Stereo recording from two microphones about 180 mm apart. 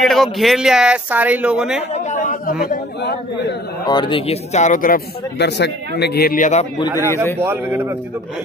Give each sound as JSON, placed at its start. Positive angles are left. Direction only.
{"t": 0.0, "sound": "speech", "side_deg": 0}
{"t": 2.0, "sound": "speech", "side_deg": 45}
{"t": 2.6, "sound": "a man's voice", "side_deg": 55}
{"t": 3.8, "sound": "speech", "side_deg": 25}
{"t": 7.3, "sound": "speech", "side_deg": -15}